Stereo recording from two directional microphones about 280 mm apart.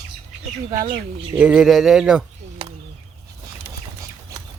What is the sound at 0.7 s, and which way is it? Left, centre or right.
Speech, centre.